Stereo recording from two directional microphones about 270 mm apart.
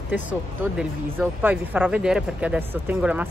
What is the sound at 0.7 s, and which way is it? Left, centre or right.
Speech, centre.